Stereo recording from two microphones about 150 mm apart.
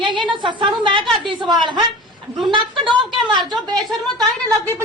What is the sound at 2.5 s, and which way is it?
Speech, 30° right (ahead or behind).